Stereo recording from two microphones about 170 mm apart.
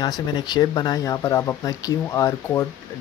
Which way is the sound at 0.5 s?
25° left (ahead or behind).